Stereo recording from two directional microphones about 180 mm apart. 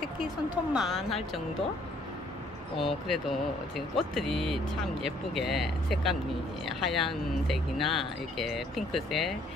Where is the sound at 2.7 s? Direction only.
Centre (ahead or behind).